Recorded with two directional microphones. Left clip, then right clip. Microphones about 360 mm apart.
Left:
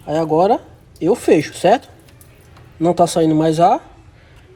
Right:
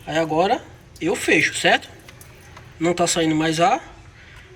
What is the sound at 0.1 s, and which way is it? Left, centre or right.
Speech, centre.